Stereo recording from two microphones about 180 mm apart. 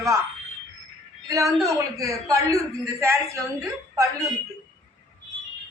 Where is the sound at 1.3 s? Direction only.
20° right (ahead or behind).